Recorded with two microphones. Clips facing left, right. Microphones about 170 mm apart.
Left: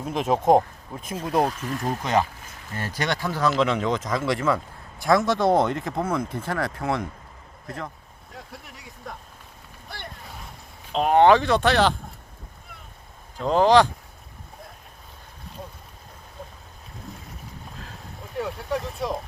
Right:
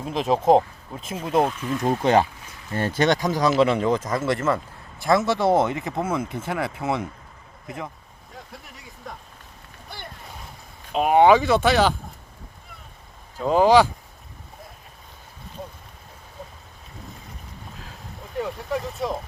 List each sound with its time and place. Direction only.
0.0 s speech: centre (ahead or behind)
1.9 s speech: 30° right (ahead or behind); by 7.0 s 5° right (ahead or behind)
8.3 s vehicle: centre (ahead or behind)
9.9 s a sound: centre (ahead or behind)
10.9 s speech: 5° right (ahead or behind)
13.4 s speech: 5° right (ahead or behind)
18.3 s speech: centre (ahead or behind)